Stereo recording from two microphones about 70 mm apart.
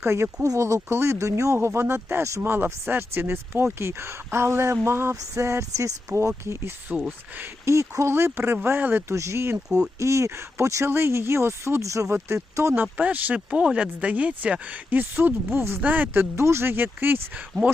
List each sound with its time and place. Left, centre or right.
0.0 s speech: right
0.4 s speech: right
6.9 s speech: centre
7.6 s speech: right
9.1 s speech: right
12.7 s speech: right
15.9 s speech: right
16.3 s speech: right